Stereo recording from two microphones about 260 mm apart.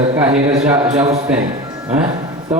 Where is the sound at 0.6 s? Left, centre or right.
Centre.